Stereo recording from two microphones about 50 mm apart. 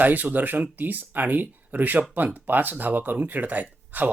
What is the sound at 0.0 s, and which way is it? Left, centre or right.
A man's voice, right.